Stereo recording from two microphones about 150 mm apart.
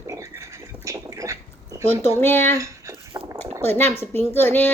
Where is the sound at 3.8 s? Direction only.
15° left (ahead or behind).